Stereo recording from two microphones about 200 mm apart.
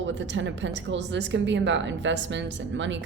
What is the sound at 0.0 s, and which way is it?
A woman's voice, 65° right (ahead or behind).